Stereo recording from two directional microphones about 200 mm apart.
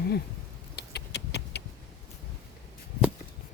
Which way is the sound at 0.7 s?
55° left (ahead or behind).